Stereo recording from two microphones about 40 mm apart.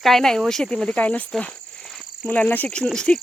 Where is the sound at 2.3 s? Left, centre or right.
Left.